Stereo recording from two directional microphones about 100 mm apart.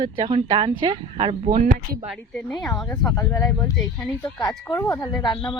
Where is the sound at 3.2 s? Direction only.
30° left (ahead or behind).